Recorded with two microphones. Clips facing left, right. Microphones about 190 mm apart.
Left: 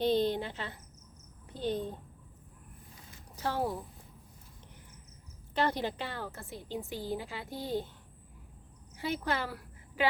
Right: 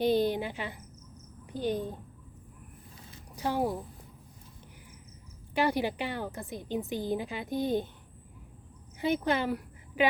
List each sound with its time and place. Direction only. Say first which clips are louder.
0.0 s a woman's voice: right 2 dB; 10° right (ahead or behind)
3.3 s a woman's voice: right 3 dB; 15° right (ahead or behind)
5.5 s a woman's voice: right 3 dB; 10° right (ahead or behind)
9.0 s a woman's voice: right 5 dB; 20° right (ahead or behind)